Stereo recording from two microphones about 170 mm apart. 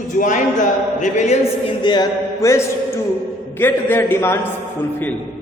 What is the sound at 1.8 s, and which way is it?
A man's voice, 25° left (ahead or behind).